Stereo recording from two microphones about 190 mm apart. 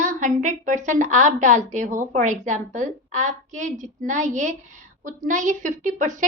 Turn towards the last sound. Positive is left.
turn(degrees=-40)  # may be behind; listen again after turning